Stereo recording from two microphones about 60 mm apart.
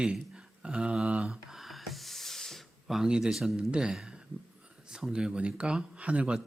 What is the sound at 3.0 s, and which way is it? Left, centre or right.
Speech, centre.